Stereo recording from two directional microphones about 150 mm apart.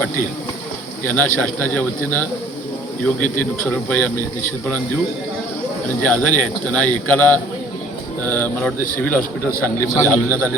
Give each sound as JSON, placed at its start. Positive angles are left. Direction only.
{"t": 1.0, "sound": "a man's voice", "side_deg": 10}
{"t": 6.0, "sound": "a man's voice", "side_deg": 10}